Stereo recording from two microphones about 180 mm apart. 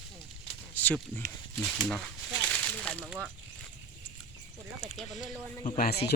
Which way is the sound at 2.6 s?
5° left (ahead or behind).